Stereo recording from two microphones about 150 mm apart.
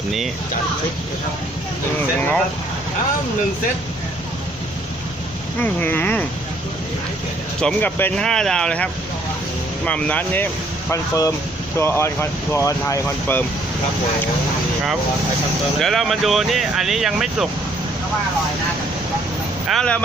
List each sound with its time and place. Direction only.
5.5 s speech: 10° left (ahead or behind)
7.6 s speech: 10° left (ahead or behind)
15.8 s speech: centre (ahead or behind)
19.6 s speech: 5° left (ahead or behind)